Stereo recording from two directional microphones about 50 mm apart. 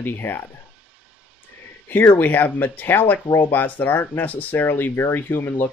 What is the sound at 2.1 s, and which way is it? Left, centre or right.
Speech, left.